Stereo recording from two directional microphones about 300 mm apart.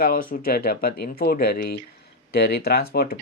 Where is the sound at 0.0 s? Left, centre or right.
Left.